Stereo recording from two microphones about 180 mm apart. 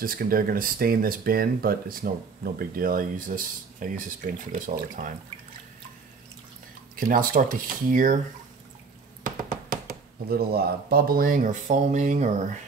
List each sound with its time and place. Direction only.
0.0 s speech: 55° right (ahead or behind)
7.3 s speech: 50° right (ahead or behind)
9.2 s speech: 55° right (ahead or behind)